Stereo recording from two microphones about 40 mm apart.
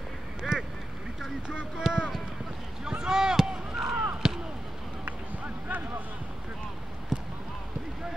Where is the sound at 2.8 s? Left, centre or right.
Centre.